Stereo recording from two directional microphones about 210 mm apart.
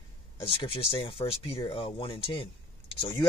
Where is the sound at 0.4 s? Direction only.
25° left (ahead or behind).